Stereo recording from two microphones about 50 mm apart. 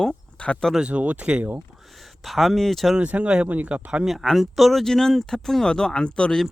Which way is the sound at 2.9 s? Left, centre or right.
Right.